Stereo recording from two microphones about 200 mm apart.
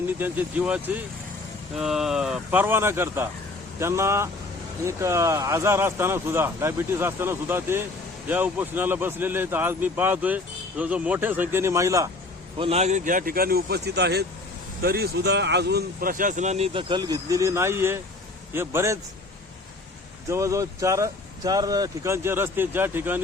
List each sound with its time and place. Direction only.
0.2 s speech: 5° right (ahead or behind)
12.5 s speech: 30° right (ahead or behind); by 18.9 s 15° right (ahead or behind)
20.3 s speech: 15° right (ahead or behind)